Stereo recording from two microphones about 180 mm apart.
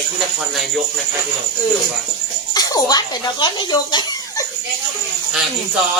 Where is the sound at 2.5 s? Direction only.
20° left (ahead or behind).